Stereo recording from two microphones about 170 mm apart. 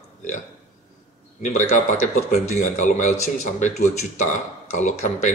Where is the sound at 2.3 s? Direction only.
45° left (ahead or behind).